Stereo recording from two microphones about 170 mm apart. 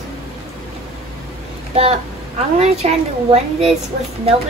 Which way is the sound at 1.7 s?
35° right (ahead or behind).